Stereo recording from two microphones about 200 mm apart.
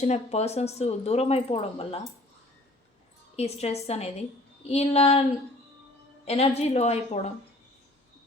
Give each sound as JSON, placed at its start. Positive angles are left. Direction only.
{"t": 0.0, "sound": "speech", "side_deg": 35}
{"t": 3.3, "sound": "speech", "side_deg": 30}
{"t": 6.2, "sound": "speech", "side_deg": 30}